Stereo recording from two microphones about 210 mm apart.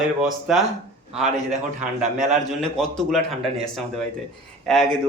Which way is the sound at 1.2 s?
35° right (ahead or behind).